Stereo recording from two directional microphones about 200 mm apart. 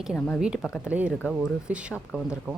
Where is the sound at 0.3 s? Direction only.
5° right (ahead or behind).